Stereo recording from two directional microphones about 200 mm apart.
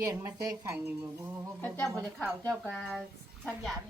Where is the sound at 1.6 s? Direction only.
10° left (ahead or behind).